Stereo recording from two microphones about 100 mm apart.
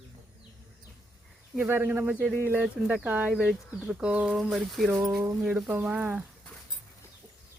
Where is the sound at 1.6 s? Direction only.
20° right (ahead or behind).